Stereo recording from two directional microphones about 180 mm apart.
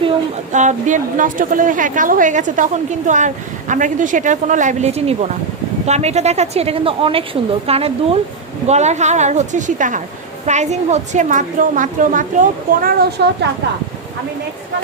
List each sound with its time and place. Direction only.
0.5 s a woman's voice: 40° right (ahead or behind)
13.2 s a woman's voice: 65° right (ahead or behind)